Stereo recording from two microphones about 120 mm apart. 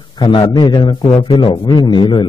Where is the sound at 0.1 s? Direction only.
40° left (ahead or behind).